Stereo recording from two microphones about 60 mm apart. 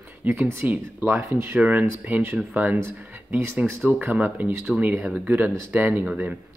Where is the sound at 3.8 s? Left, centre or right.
Right.